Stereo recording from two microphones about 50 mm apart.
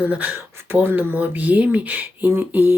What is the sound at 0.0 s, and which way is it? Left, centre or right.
Speech, right.